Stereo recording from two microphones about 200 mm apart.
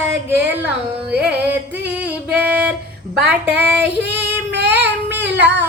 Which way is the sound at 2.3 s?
5° right (ahead or behind).